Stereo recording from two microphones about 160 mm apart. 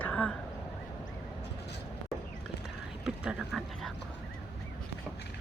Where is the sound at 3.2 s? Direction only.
Centre (ahead or behind).